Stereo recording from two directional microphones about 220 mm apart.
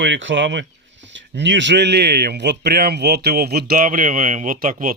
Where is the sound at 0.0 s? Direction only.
55° right (ahead or behind).